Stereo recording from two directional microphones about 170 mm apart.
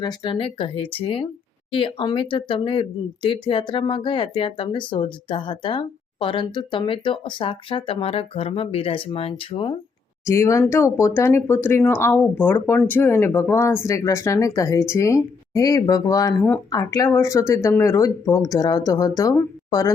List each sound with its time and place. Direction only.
0.0 s speech: 25° left (ahead or behind)
10.2 s speech: 15° left (ahead or behind)